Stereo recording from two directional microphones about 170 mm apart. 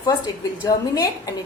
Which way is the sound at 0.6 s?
25° left (ahead or behind).